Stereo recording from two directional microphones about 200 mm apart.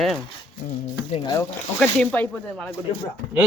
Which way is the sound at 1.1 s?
20° left (ahead or behind).